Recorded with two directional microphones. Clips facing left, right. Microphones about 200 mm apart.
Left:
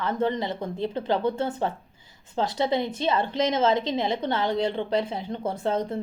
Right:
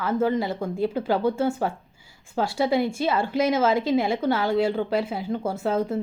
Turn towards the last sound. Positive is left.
turn(degrees=-5)  # may be behind; listen again after turning